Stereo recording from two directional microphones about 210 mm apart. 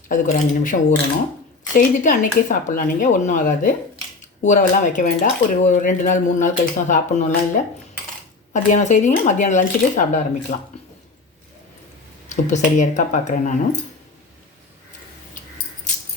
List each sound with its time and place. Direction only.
0.1 s speech: 40° left (ahead or behind)
8.7 s speech: 35° left (ahead or behind)
12.3 s speech: 35° left (ahead or behind)